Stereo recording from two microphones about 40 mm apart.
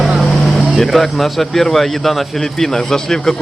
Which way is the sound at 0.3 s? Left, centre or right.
Centre.